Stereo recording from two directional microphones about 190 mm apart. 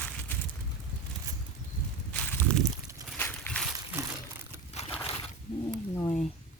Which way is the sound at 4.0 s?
15° right (ahead or behind).